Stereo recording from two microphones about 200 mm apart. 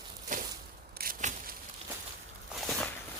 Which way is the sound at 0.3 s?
40° right (ahead or behind).